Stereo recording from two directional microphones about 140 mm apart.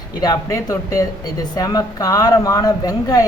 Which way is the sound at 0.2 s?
25° left (ahead or behind).